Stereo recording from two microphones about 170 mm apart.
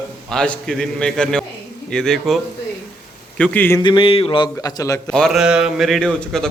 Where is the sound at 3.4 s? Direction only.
10° left (ahead or behind).